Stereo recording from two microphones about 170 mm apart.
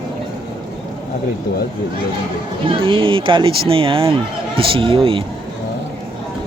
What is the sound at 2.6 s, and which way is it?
Speech, 30° right (ahead or behind).